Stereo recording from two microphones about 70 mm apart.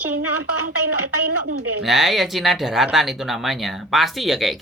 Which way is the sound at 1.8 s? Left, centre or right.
Centre.